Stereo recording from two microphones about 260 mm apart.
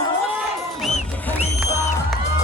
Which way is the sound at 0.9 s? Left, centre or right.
Left.